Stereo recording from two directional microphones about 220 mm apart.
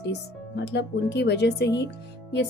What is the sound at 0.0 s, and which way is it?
Speech, 50° left (ahead or behind).